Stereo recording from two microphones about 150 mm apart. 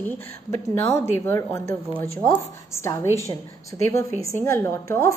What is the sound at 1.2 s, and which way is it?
A woman's voice, 20° left (ahead or behind).